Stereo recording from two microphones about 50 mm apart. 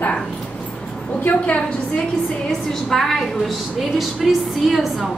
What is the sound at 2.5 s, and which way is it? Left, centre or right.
A woman's voice, centre.